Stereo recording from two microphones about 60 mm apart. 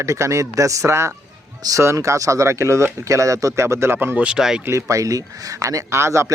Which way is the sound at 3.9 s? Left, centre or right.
Right.